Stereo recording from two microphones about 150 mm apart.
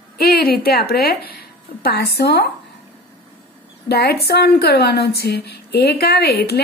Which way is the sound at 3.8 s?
90° left.